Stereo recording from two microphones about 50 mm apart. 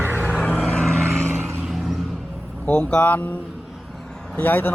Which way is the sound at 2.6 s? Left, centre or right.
Left.